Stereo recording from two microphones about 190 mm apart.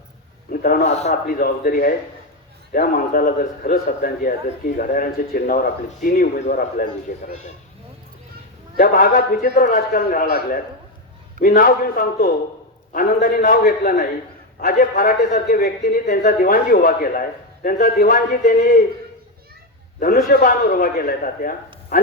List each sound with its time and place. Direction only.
0.5 s a woman's voice: 50° left (ahead or behind)
8.8 s a woman's voice: 50° left (ahead or behind)
20.0 s a woman's voice: 45° left (ahead or behind)